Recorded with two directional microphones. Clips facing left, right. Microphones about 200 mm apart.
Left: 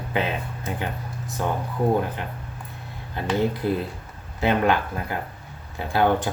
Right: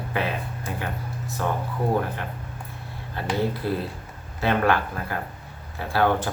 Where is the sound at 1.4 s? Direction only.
15° left (ahead or behind).